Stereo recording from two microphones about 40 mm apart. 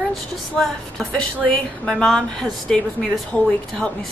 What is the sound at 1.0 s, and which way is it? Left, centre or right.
Speech, left.